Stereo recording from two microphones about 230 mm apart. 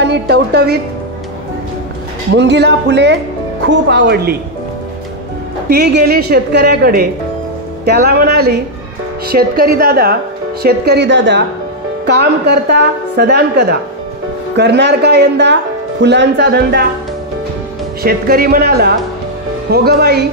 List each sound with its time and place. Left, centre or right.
0.0 s a woman's voice: right
2.3 s speech: right
5.7 s speech: right
18.0 s speech: right